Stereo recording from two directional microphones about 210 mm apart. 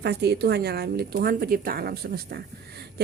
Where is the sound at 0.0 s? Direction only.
50° right (ahead or behind).